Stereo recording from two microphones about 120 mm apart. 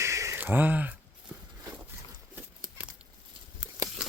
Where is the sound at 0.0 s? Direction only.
25° right (ahead or behind).